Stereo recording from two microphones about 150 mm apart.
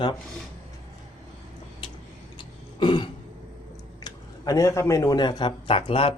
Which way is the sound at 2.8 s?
30° left (ahead or behind).